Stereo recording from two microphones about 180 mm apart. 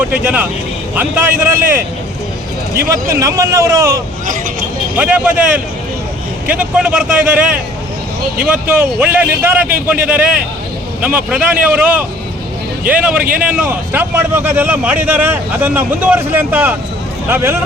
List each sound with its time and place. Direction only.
0.9 s speech: 10° right (ahead or behind)
2.9 s speech: 15° right (ahead or behind)
6.5 s speech: 5° right (ahead or behind)